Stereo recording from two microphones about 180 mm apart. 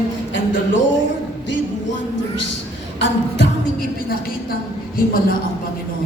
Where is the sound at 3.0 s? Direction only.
80° left.